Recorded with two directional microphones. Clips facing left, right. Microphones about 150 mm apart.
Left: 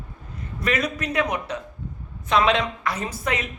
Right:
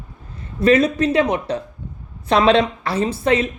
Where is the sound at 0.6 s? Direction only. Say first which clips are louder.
Right 11 dB; 30° right (ahead or behind).